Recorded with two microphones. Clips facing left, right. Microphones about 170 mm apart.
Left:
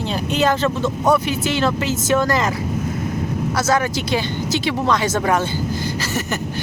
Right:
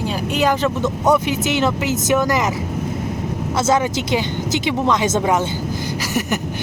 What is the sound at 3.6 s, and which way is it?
Speech, 20° right (ahead or behind).